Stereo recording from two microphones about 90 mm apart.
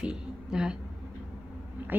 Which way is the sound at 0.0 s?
10° right (ahead or behind).